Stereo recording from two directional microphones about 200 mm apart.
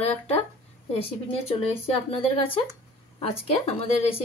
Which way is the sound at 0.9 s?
30° left (ahead or behind).